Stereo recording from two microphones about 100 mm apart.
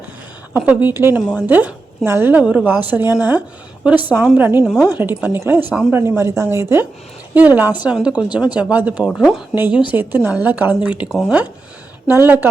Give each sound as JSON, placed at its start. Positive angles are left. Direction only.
{"t": 0.6, "sound": "a woman's voice", "side_deg": -15}
{"t": 4.6, "sound": "a woman's voice", "side_deg": -5}
{"t": 4.9, "sound": "speech", "side_deg": -20}
{"t": 5.6, "sound": "a woman's voice", "side_deg": -10}
{"t": 5.9, "sound": "a woman's voice", "side_deg": -25}
{"t": 9.1, "sound": "speech", "side_deg": -5}
{"t": 9.6, "sound": "a woman's voice", "side_deg": -20}
{"t": 12.2, "sound": "speech", "side_deg": -20}